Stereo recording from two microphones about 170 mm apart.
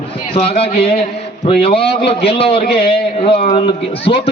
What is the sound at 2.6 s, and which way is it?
Speech, 65° left (ahead or behind).